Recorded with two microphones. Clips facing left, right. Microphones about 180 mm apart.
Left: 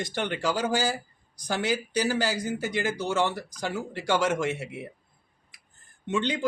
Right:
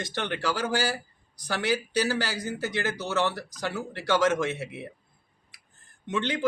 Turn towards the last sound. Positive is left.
turn(degrees=15)  # may be behind; listen again after turning